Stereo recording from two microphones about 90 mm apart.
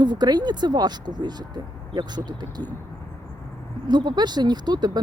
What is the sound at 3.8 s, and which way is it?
Speech, 50° right (ahead or behind).